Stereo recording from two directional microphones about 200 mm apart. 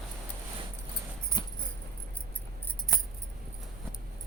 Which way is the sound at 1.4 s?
20° left (ahead or behind).